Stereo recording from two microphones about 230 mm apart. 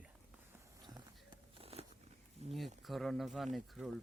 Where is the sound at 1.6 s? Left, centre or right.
Right.